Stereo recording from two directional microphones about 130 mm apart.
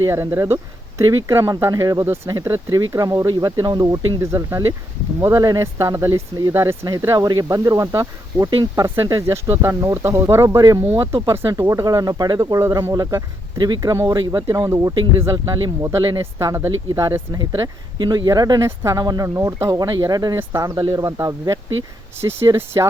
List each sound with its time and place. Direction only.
0.1 s speech: 20° right (ahead or behind)